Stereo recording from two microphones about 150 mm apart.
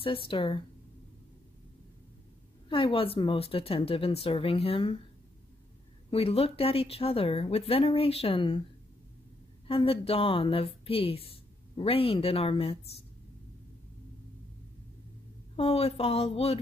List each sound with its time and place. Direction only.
0.0 s a woman's voice: 35° left (ahead or behind)
2.7 s a woman's voice: 35° left (ahead or behind)
6.0 s a woman's voice: 40° left (ahead or behind)
9.7 s a woman's voice: 40° left (ahead or behind)
15.5 s a woman's voice: 40° left (ahead or behind)